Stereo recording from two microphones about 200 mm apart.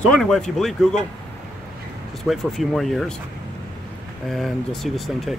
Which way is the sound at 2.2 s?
Centre (ahead or behind).